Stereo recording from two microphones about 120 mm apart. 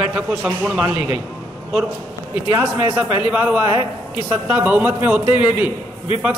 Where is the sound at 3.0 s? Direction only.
15° right (ahead or behind).